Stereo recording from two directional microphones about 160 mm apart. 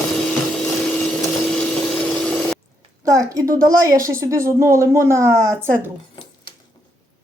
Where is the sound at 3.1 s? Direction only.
20° right (ahead or behind).